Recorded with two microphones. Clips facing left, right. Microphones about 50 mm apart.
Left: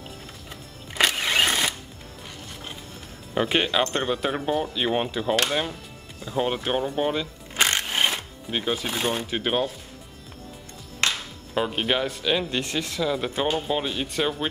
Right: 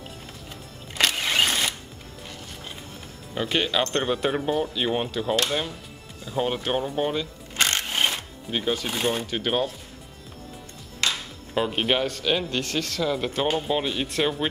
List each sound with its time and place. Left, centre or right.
0.9 s music: centre
3.3 s speech: centre
3.9 s speech: centre
7.5 s music: centre
11.5 s speech: centre
12.1 s speech: centre
12.4 s speech: left
13.0 s speech: centre